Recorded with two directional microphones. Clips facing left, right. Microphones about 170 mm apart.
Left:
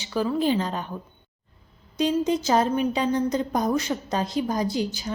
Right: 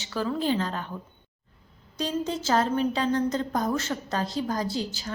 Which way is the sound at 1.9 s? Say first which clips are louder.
Left 6 dB; 20° left (ahead or behind).